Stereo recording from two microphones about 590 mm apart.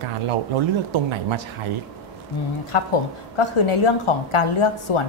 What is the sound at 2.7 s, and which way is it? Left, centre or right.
A woman's voice, left.